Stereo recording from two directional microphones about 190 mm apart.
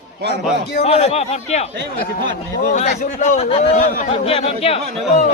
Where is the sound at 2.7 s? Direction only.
35° left (ahead or behind).